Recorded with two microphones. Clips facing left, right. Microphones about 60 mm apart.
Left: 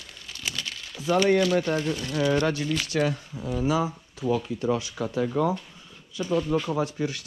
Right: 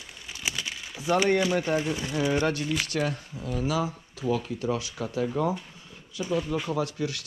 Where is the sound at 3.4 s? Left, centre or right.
Left.